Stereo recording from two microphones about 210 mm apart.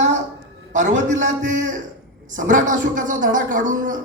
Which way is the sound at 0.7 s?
35° right (ahead or behind).